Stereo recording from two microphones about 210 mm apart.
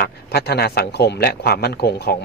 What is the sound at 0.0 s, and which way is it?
Speech, 50° left (ahead or behind).